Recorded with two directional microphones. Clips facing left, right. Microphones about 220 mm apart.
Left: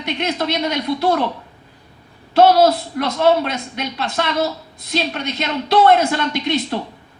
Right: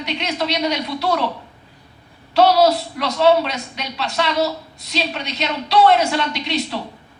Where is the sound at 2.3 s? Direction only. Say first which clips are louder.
Left 2 dB; 50° left (ahead or behind).